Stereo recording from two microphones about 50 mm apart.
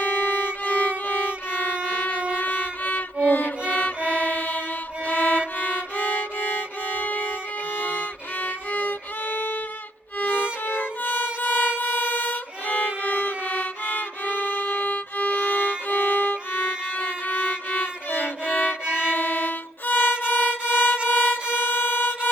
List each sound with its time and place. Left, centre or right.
0.0 s violin: left
7.0 s music: left
7.8 s violin: left
10.2 s music: left
15.9 s violin: left
18.1 s violin: left